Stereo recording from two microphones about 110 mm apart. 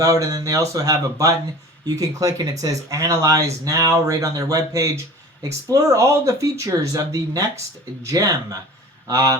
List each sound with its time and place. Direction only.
0.0 s speech: 30° right (ahead or behind)